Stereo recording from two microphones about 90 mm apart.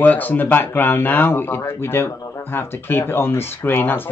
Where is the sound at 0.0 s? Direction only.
20° left (ahead or behind).